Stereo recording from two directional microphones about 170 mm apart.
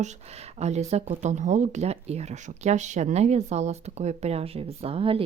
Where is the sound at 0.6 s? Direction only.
40° right (ahead or behind).